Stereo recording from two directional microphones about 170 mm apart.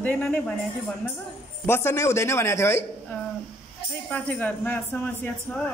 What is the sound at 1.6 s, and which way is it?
A woman's voice, 15° left (ahead or behind).